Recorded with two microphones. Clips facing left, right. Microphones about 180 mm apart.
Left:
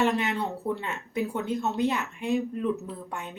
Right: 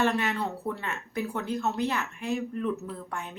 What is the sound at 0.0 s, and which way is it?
A woman's voice, 20° left (ahead or behind).